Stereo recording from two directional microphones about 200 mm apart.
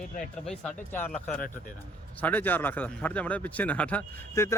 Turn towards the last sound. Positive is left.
turn(degrees=15)  # may be behind; listen again after turning